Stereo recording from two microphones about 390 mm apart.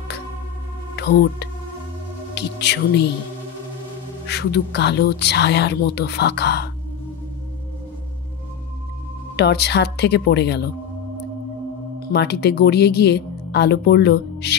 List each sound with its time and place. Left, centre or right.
0.9 s speech: left
4.3 s speech: left
9.4 s speech: left
12.1 s speech: left